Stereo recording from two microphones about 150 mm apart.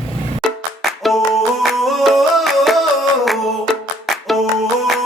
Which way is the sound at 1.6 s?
Centre (ahead or behind).